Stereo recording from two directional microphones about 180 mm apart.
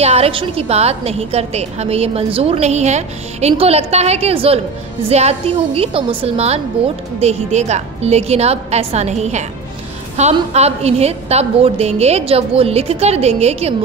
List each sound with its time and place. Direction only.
0.0 s a woman's voice: 35° right (ahead or behind)